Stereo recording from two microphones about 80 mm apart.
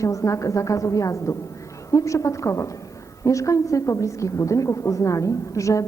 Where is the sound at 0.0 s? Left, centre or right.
Left.